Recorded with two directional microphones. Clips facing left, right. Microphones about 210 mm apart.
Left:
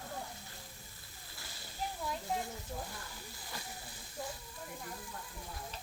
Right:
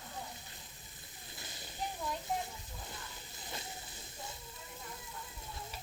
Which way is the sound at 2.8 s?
20° right (ahead or behind).